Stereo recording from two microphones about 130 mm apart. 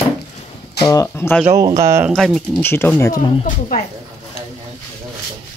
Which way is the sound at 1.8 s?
25° right (ahead or behind).